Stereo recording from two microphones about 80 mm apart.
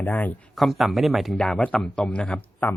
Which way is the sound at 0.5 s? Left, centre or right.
Centre.